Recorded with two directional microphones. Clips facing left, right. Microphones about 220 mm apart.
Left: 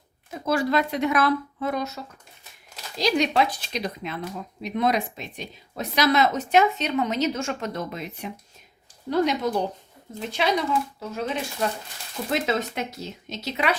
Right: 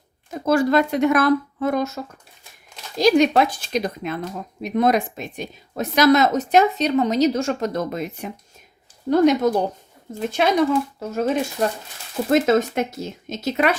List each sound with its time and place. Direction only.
0.4 s speech: 45° right (ahead or behind)
3.0 s speech: 50° right (ahead or behind)